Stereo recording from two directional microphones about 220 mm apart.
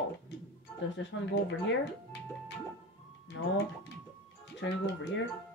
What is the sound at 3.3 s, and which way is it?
Speech, 60° left (ahead or behind).